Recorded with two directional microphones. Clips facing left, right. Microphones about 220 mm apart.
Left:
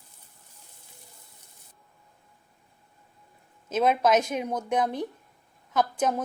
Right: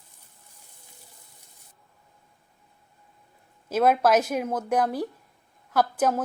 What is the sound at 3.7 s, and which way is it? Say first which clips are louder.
A woman's voice: right 2 dB; 5° right (ahead or behind).